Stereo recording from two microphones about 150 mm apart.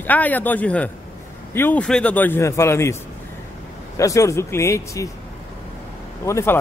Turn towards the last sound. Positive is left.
turn(degrees=20)  # may be behind; listen again after turning